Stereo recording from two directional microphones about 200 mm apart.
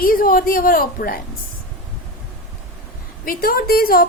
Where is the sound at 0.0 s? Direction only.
45° left (ahead or behind).